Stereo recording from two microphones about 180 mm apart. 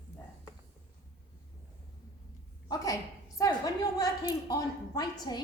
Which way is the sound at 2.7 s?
20° left (ahead or behind).